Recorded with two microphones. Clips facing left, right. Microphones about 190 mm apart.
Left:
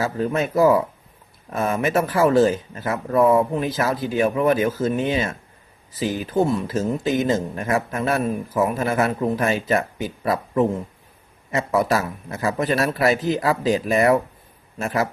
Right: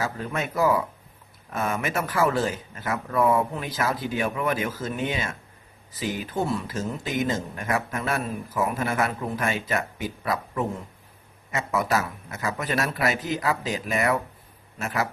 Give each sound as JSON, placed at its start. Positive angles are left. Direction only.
{"t": 0.0, "sound": "speech", "side_deg": 30}
{"t": 6.4, "sound": "speech", "side_deg": 25}